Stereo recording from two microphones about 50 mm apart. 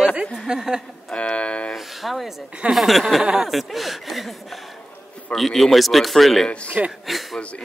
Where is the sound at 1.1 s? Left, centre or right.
Left.